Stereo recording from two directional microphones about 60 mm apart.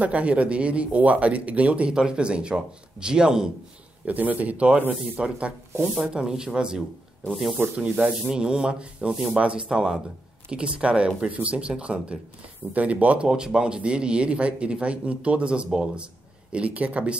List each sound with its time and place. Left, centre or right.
0.0 s speech: right
4.0 s speech: right
13.3 s speech: centre